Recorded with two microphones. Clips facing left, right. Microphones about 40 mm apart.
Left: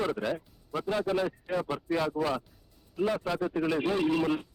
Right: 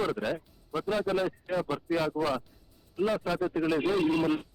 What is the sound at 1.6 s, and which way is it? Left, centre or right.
Speech, centre.